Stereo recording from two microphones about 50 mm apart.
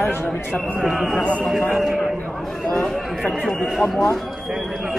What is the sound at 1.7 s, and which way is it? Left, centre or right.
Speech, centre.